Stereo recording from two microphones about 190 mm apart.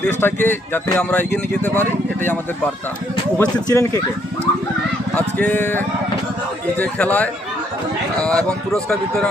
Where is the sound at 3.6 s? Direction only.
15° left (ahead or behind).